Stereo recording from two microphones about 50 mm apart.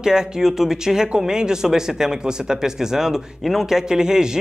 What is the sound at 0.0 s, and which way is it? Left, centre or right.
Speech, centre.